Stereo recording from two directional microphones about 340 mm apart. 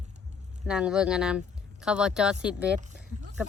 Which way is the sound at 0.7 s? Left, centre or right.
Centre.